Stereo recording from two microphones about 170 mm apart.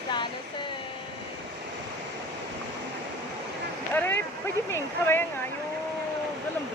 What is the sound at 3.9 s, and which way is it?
Speech, 10° left (ahead or behind).